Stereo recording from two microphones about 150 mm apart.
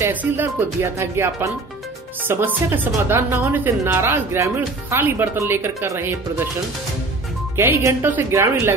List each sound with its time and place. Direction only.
0.0 s speech: 10° right (ahead or behind)
7.5 s speech: 15° right (ahead or behind)